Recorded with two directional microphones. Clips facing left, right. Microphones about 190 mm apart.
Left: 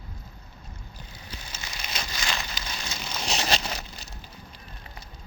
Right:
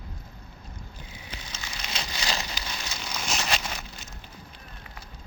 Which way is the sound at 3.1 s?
35° left (ahead or behind).